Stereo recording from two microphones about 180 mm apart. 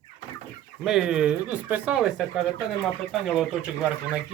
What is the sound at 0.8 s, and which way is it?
Speech, 5° right (ahead or behind).